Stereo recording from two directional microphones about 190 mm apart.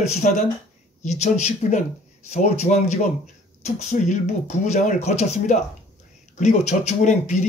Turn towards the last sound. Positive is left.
turn(degrees=40)  # may be behind; listen again after turning